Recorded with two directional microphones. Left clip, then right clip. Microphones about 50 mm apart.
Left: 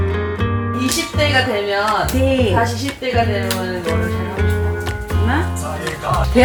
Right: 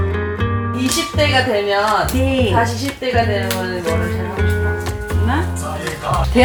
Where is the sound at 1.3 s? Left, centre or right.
Centre.